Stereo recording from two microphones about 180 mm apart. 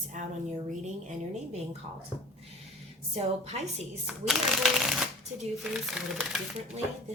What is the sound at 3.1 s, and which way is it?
Speech, 35° right (ahead or behind).